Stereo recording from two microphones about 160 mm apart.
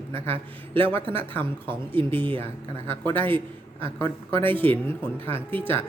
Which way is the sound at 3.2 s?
30° right (ahead or behind).